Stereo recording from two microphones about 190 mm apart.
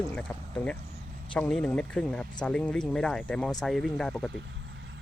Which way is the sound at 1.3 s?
5° left (ahead or behind).